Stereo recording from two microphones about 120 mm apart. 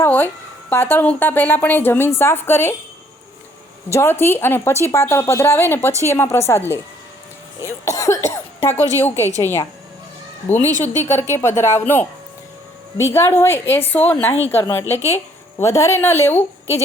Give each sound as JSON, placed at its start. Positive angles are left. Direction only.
{"t": 0.0, "sound": "a woman's voice", "side_deg": 15}
{"t": 3.9, "sound": "a woman's voice", "side_deg": 20}